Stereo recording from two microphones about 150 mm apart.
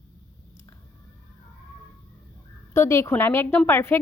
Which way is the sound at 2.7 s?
15° left (ahead or behind).